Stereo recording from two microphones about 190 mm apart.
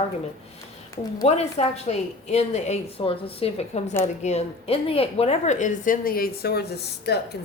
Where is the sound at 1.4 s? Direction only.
35° left (ahead or behind).